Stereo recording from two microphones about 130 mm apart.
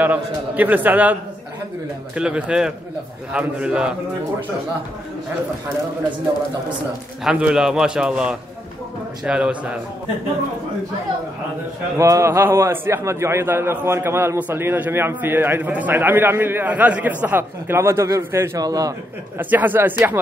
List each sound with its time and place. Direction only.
0.0 s a man's voice: 15° right (ahead or behind)
2.1 s a man's voice: 10° right (ahead or behind)
7.2 s a man's voice: 5° right (ahead or behind)
12.0 s a man's voice: 25° right (ahead or behind)
19.5 s a man's voice: 15° right (ahead or behind)